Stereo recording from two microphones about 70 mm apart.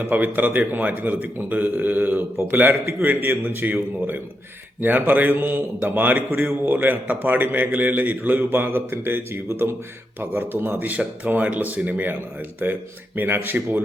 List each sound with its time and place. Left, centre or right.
0.0 s speech: right